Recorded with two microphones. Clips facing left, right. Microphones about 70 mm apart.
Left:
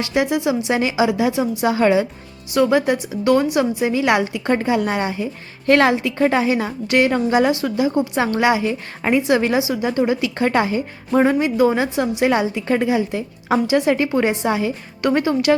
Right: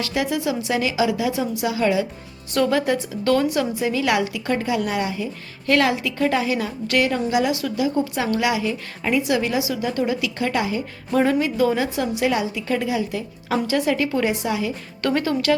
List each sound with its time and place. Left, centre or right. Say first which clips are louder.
0.0 s a woman's voice: left 4 dB; left
1.6 s a woman's voice: left 5 dB; left
2.5 s a woman's voice: left 3 dB; centre
7.1 s a woman's voice: left 4 dB; left
11.1 s a woman's voice: left 3 dB; left
15.0 s a woman's voice: left 4 dB; centre